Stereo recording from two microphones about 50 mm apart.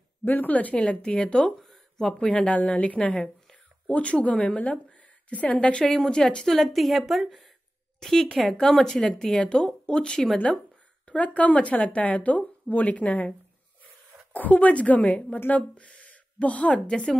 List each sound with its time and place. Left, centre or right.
0.2 s a woman's voice: left; by 6.5 s centre
6.5 s a woman's voice: centre; by 13.3 s left
14.3 s a woman's voice: left
15.3 s a woman's voice: left